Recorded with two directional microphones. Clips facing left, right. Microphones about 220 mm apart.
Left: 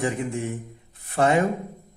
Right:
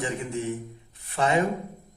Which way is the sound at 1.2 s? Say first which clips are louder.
Left 5 dB; 50° left (ahead or behind).